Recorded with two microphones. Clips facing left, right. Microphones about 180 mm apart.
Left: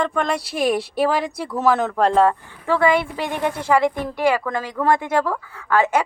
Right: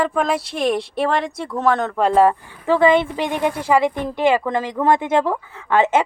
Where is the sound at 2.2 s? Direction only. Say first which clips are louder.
Right 2 dB; 20° right (ahead or behind).